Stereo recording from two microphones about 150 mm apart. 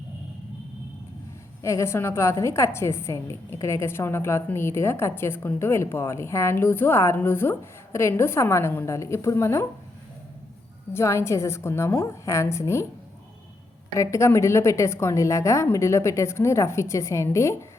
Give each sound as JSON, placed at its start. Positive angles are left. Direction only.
{"t": 1.6, "sound": "a woman's voice", "side_deg": 20}
{"t": 10.9, "sound": "a woman's voice", "side_deg": 15}
{"t": 13.9, "sound": "a woman's voice", "side_deg": 20}